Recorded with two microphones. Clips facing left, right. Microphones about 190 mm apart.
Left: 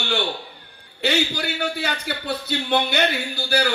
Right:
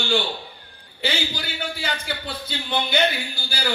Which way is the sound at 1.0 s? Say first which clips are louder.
Left 5 dB; 65° left (ahead or behind).